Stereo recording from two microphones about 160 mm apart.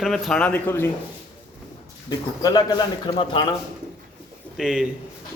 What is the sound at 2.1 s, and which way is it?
A man's voice, 25° left (ahead or behind).